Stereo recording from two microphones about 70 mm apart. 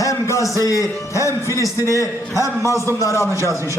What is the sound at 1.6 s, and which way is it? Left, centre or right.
A man's voice, left.